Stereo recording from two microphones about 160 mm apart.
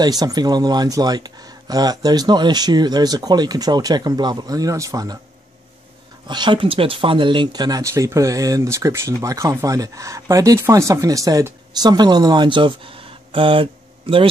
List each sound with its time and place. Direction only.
0.0 s speech: 25° right (ahead or behind)
6.2 s speech: 30° right (ahead or behind)